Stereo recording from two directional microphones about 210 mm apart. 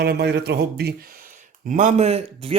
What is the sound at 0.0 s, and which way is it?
Speech, 50° right (ahead or behind).